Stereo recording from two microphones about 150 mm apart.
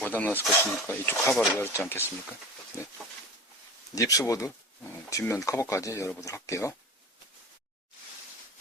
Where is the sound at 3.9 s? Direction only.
20° left (ahead or behind).